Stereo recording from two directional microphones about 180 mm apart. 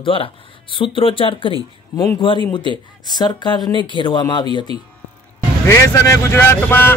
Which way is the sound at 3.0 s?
25° left (ahead or behind).